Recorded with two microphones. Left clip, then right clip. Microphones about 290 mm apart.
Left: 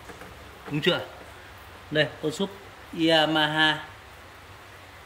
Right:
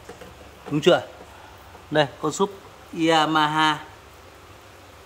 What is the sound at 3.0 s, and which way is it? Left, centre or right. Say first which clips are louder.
Speech: right 2 dB; centre.